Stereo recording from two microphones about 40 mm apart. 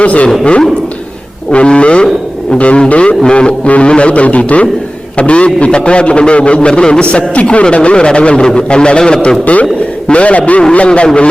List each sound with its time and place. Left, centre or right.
0.0 s speech: left
1.5 s a man's voice: left